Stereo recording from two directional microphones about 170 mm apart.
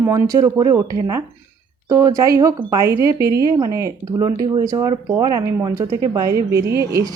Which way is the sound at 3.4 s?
20° right (ahead or behind).